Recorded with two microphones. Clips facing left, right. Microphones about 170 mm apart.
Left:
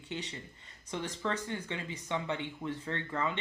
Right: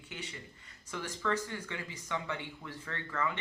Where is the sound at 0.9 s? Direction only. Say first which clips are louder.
Even; 20° left (ahead or behind).